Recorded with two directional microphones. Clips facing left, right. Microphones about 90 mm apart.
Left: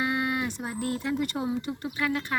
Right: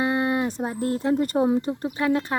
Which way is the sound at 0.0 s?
30° right (ahead or behind).